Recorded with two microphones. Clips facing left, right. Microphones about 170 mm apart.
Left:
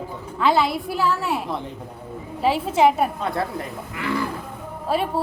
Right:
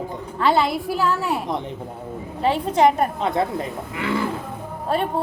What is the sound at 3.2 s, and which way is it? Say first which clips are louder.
A woman's voice: right 3 dB; 20° right (ahead or behind).